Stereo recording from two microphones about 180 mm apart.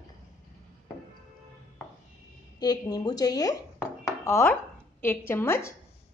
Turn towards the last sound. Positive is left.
turn(degrees=15)  # may be behind; listen again after turning